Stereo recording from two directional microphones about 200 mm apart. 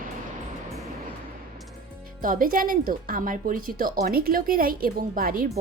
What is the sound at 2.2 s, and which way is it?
A woman's voice, 45° right (ahead or behind).